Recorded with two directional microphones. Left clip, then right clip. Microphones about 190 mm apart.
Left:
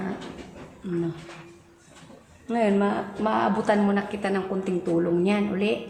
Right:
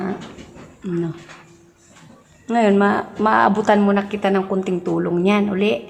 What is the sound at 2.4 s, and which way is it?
A woman's voice, 25° right (ahead or behind).